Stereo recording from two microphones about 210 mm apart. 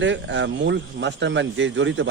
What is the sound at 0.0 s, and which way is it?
A man's voice, 60° right (ahead or behind).